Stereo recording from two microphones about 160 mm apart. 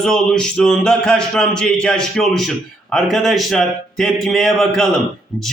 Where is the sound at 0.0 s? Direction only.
5° left (ahead or behind).